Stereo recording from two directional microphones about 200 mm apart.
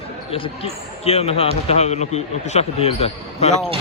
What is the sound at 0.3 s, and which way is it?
Speech, 30° left (ahead or behind).